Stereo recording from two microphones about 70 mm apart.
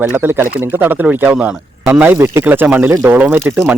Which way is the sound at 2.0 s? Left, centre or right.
Right.